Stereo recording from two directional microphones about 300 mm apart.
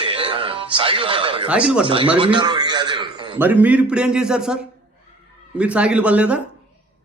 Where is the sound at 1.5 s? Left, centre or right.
Centre.